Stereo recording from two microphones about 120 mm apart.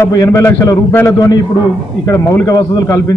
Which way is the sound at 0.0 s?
25° left (ahead or behind).